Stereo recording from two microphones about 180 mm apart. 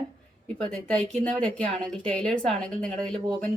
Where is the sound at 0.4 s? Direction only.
5° left (ahead or behind).